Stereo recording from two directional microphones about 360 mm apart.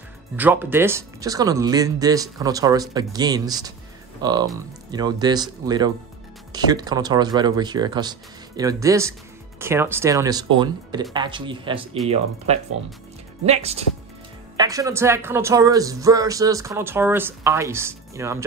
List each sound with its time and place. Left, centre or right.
0.4 s speech: centre